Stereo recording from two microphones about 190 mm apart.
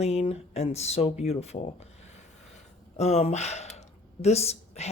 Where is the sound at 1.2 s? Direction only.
35° left (ahead or behind).